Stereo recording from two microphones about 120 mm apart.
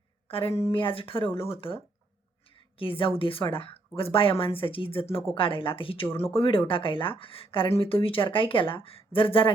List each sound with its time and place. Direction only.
0.3 s speech: 50° left (ahead or behind)